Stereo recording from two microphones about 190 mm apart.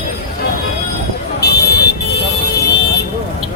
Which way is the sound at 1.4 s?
60° left (ahead or behind).